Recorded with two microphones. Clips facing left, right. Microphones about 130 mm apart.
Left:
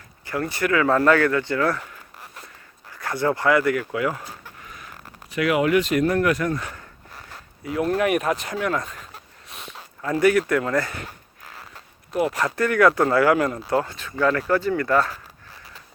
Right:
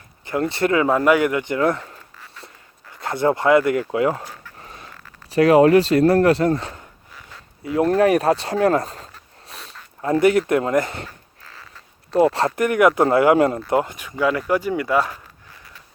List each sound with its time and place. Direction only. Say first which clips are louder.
0.3 s speech: right 4 dB; 25° right (ahead or behind)
4.6 s a sound: right 2 dB; 30° right (ahead or behind)
5.3 s speech: right 7 dB; 35° right (ahead or behind)
9.5 s a sound: even; 35° right (ahead or behind)
10.0 s speech: right 2 dB; 25° right (ahead or behind)
12.1 s speech: right 6 dB; 30° right (ahead or behind); by 15.2 s 15° right (ahead or behind)